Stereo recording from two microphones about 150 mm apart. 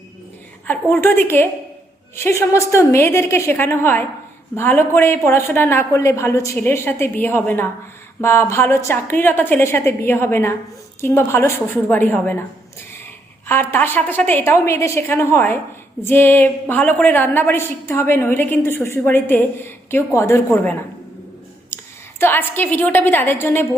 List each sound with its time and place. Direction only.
0.7 s a woman's voice: 15° left (ahead or behind)
13.5 s a woman's voice: 15° left (ahead or behind)
21.7 s a sound: 15° left (ahead or behind)
22.2 s a woman's voice: 15° left (ahead or behind)